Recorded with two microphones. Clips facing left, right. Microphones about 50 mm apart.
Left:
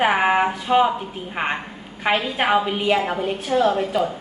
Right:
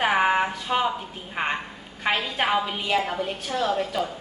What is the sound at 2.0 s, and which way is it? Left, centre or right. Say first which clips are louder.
A woman's voice: left 4 dB; centre.